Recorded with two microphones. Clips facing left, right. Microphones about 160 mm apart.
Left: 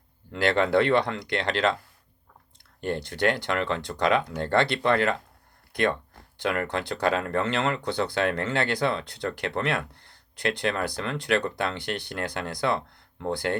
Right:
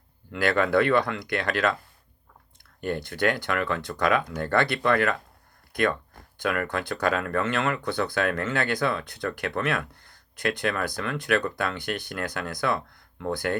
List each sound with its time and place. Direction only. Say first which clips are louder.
0.3 s speech: even; 25° left (ahead or behind)
2.8 s speech: even; 25° left (ahead or behind)